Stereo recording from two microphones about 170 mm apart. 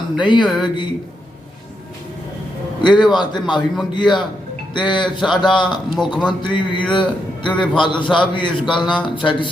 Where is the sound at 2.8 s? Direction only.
25° left (ahead or behind).